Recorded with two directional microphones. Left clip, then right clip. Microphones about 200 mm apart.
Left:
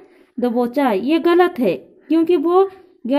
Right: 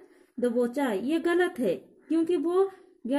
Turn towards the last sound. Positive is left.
turn(degrees=10)  # may be behind; listen again after turning